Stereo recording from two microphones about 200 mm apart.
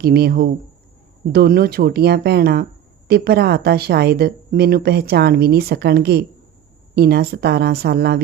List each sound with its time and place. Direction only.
0.0 s a woman's voice: 50° right (ahead or behind)